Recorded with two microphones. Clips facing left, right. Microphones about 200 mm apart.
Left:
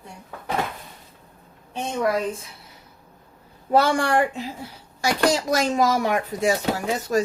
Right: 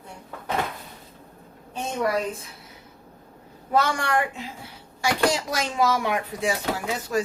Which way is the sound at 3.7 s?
30° left (ahead or behind).